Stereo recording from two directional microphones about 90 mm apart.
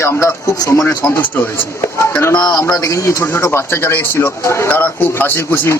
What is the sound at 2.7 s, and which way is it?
Speech, 35° left (ahead or behind).